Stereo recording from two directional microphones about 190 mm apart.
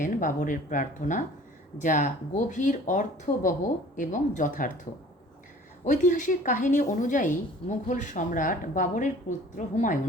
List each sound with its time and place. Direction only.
0.0 s a woman's voice: 45° left (ahead or behind)
5.8 s a woman's voice: 40° left (ahead or behind)